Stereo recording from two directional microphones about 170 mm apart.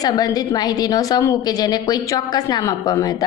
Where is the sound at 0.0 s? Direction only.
20° left (ahead or behind).